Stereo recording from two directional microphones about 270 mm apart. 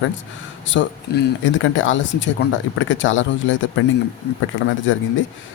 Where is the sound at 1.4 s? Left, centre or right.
Left.